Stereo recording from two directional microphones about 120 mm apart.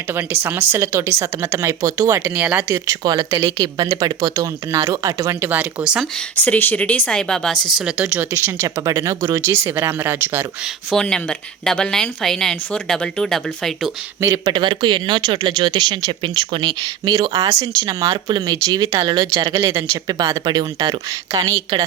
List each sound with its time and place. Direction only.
0.1 s speech: 15° right (ahead or behind)
2.3 s speech: 10° right (ahead or behind)
2.6 s speech: 25° right (ahead or behind); by 6.1 s 5° right (ahead or behind)
6.3 s a woman's voice: 15° left (ahead or behind)
7.8 s speech: 10° right (ahead or behind)
10.9 s a woman's voice: 5° left (ahead or behind)
14.2 s speech: 25° right (ahead or behind)
14.5 s speech: 40° right (ahead or behind)
17.2 s speech: 30° right (ahead or behind)